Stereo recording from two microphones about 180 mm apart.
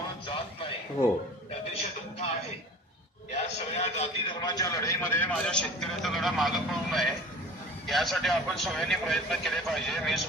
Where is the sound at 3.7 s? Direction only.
35° left (ahead or behind).